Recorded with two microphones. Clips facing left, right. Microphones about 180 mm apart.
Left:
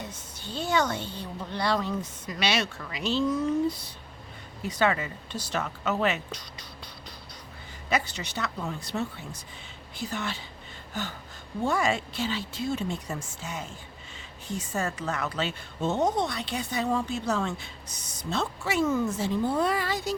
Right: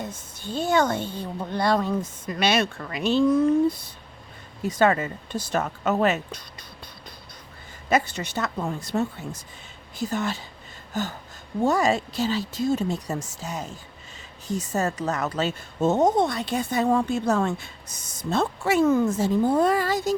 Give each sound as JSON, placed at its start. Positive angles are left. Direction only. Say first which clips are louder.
{"t": 0.0, "sound": "a woman's voice", "louder": "right 5 dB", "side_deg": -50}
{"t": 7.9, "sound": "a woman's voice", "louder": "right 6 dB", "side_deg": -50}